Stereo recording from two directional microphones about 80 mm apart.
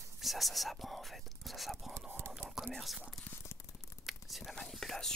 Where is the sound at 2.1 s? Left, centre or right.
Right.